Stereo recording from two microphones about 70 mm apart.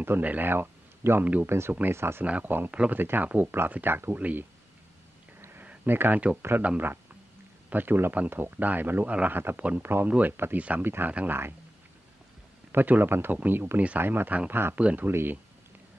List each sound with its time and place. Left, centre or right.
0.0 s speech: right
2.0 s speech: right
2.2 s speech: right
5.4 s a sound: right
5.7 s speech: right
9.8 s speech: right
12.7 s speech: right
14.8 s speech: centre
15.0 s speech: right